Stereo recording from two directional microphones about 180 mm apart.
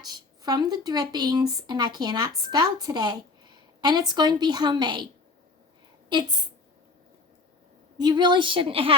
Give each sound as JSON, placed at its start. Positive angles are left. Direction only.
{"t": 0.0, "sound": "a woman's voice", "side_deg": -20}
{"t": 6.1, "sound": "a woman's voice", "side_deg": -25}
{"t": 7.9, "sound": "a woman's voice", "side_deg": -25}